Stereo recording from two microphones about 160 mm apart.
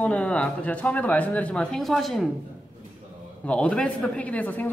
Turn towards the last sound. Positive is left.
turn(degrees=10)  # may be behind; listen again after turning